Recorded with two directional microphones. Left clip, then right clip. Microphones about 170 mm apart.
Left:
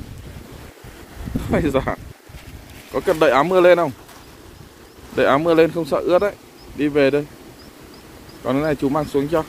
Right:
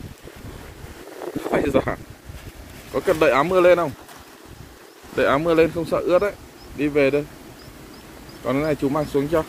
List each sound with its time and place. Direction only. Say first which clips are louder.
1.5 s speech: left 1 dB; 20° left (ahead or behind)
5.1 s speech: left 3 dB; 30° left (ahead or behind)
8.5 s speech: left 2 dB; 30° left (ahead or behind)